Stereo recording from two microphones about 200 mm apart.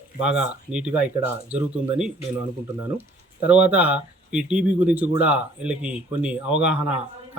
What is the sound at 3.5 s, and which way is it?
Speech, 5° right (ahead or behind).